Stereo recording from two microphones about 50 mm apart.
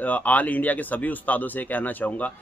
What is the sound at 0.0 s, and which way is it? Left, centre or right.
Speech, left.